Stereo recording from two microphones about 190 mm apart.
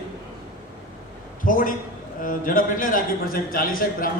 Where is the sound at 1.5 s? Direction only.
45° left (ahead or behind).